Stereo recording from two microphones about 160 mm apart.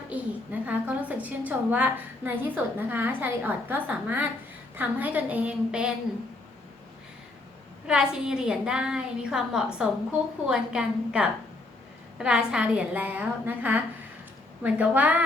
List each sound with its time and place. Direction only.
0.1 s a woman's voice: 10° right (ahead or behind)
7.9 s a woman's voice: 5° right (ahead or behind)